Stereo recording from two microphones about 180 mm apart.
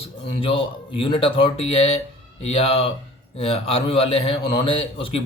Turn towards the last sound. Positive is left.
turn(degrees=30)  # may be behind; listen again after turning